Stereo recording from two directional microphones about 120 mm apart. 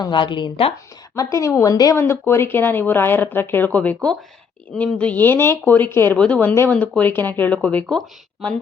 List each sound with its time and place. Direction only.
0.0 s speech: 40° left (ahead or behind)
1.1 s a woman's voice: 25° left (ahead or behind)
2.0 s speech: 20° left (ahead or behind); by 8.5 s 5° left (ahead or behind)